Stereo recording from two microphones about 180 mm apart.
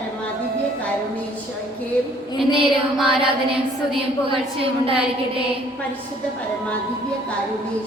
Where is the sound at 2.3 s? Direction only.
30° right (ahead or behind).